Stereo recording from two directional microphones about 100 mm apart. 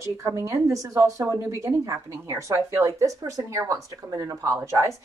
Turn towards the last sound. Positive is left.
turn(degrees=-30)  # may be behind; listen again after turning